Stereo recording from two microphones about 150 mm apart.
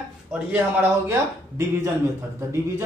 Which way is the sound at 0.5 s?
15° right (ahead or behind).